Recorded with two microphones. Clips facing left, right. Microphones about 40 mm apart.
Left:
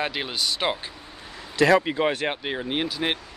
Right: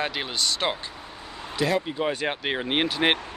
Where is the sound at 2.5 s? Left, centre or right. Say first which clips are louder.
Right 2 dB; right.